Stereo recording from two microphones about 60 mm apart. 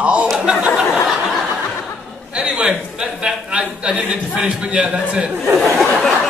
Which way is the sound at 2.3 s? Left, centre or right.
Centre.